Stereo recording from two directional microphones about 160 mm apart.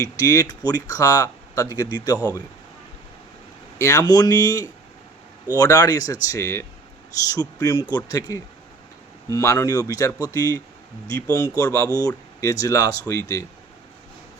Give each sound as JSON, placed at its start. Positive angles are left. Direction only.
{"t": 0.0, "sound": "speech", "side_deg": 20}
{"t": 3.8, "sound": "speech", "side_deg": 20}